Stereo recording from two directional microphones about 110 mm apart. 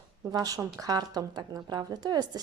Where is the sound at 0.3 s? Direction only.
35° right (ahead or behind).